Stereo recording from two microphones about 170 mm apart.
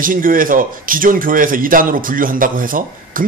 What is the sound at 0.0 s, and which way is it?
Speech, 55° right (ahead or behind).